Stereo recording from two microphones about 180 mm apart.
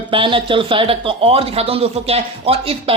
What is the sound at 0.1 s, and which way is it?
Speech, 30° right (ahead or behind).